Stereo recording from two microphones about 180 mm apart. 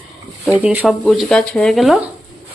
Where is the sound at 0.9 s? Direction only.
5° left (ahead or behind).